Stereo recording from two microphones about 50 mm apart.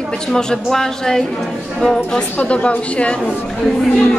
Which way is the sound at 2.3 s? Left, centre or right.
Left.